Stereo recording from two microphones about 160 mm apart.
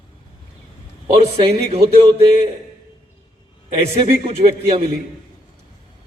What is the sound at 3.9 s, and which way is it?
Speech, 40° right (ahead or behind).